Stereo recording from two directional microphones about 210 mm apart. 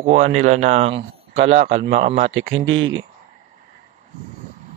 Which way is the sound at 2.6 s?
65° right (ahead or behind).